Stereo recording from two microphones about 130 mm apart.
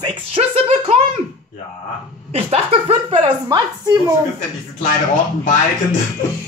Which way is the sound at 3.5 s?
30° right (ahead or behind).